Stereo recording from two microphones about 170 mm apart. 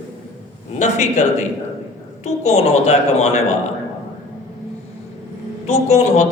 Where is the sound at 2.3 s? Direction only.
40° left (ahead or behind).